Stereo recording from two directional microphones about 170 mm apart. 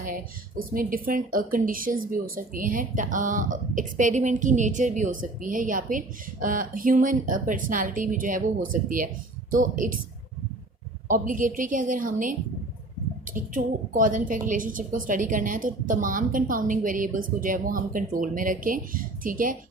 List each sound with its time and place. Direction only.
0.0 s a woman's voice: 55° right (ahead or behind)
11.1 s a woman's voice: 50° right (ahead or behind)